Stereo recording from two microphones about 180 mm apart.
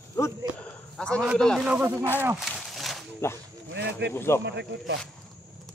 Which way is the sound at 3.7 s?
70° right (ahead or behind).